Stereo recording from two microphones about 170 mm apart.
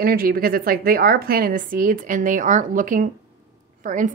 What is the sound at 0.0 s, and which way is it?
A woman's voice, 60° right (ahead or behind).